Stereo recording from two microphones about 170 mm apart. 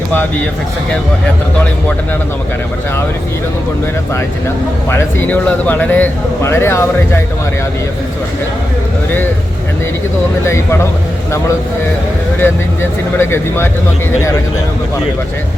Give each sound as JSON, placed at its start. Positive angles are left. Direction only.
{"t": 4.9, "sound": "speech", "side_deg": 10}
{"t": 10.4, "sound": "speech", "side_deg": 15}
{"t": 12.4, "sound": "speech", "side_deg": 15}